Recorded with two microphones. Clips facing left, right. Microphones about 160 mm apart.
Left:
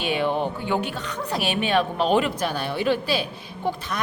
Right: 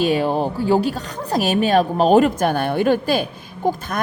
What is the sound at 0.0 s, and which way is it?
A woman's voice, 40° right (ahead or behind).